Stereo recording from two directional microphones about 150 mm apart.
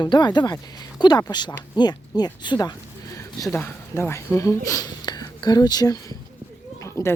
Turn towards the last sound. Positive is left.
turn(degrees=20)  # may be behind; listen again after turning